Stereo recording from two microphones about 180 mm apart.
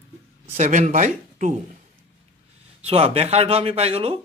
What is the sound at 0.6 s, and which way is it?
Speech, 40° right (ahead or behind).